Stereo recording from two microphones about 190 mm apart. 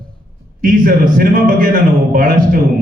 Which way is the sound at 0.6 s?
45° right (ahead or behind).